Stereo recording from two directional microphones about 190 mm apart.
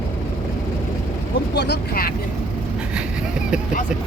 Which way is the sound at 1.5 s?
65° left (ahead or behind).